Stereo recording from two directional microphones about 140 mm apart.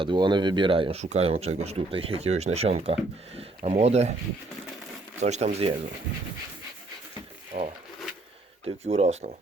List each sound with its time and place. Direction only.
0.0 s speech: 35° right (ahead or behind); by 4.1 s 50° right (ahead or behind)
5.2 s speech: 50° right (ahead or behind)
7.5 s a sound: 55° right (ahead or behind)
8.6 s speech: 50° right (ahead or behind)